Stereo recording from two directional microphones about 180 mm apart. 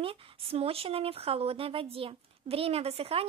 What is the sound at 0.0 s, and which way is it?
Speech, 30° right (ahead or behind).